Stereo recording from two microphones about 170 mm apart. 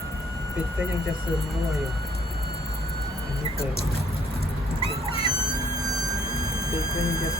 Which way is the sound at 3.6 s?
35° left (ahead or behind).